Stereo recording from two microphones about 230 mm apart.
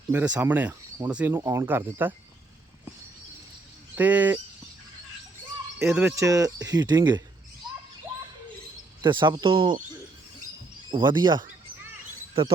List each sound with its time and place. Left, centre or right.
0.1 s speech: centre
3.9 s speech: centre
5.8 s speech: centre
9.0 s speech: right
10.9 s bird: centre
12.3 s speech: right